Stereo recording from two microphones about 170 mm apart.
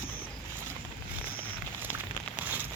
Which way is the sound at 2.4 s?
10° right (ahead or behind).